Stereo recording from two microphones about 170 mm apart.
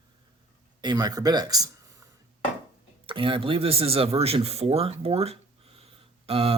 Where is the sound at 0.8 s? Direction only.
25° right (ahead or behind).